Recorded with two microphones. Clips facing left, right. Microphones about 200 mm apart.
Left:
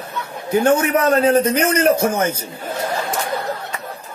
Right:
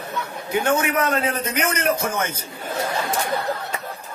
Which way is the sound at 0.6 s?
35° left (ahead or behind).